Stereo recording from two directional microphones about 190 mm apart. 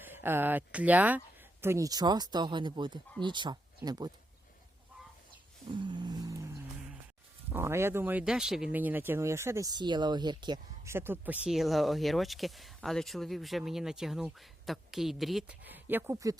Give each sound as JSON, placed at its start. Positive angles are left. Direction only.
{"t": 0.0, "sound": "speech", "side_deg": -10}
{"t": 5.7, "sound": "vehicle", "side_deg": -25}
{"t": 7.5, "sound": "speech", "side_deg": -15}
{"t": 10.9, "sound": "speech", "side_deg": -10}